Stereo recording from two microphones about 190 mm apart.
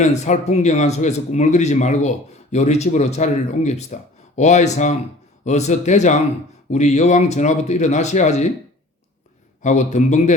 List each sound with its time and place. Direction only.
0.0 s a man's voice: 35° left (ahead or behind)
9.6 s a man's voice: 40° left (ahead or behind)